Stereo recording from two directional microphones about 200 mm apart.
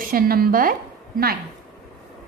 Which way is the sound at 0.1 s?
45° right (ahead or behind).